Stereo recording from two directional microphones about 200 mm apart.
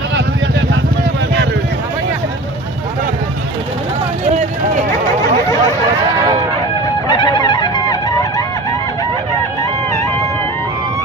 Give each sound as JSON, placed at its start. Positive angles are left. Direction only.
{"t": 7.1, "sound": "music", "side_deg": 25}